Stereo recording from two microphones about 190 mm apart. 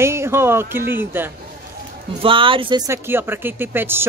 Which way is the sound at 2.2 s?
25° right (ahead or behind).